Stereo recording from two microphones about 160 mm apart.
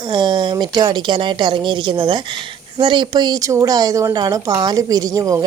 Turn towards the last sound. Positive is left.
turn(degrees=-20)  # may be behind; listen again after turning